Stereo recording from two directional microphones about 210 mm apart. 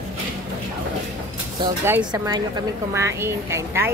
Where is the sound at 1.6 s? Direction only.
10° right (ahead or behind).